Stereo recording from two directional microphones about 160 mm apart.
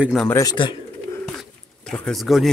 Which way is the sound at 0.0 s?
Centre (ahead or behind).